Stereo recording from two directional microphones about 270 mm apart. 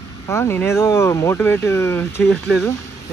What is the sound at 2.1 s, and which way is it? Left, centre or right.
Speech, left.